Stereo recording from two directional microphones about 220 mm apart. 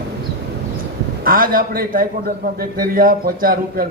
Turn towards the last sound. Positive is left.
turn(degrees=-40)  # may be behind; listen again after turning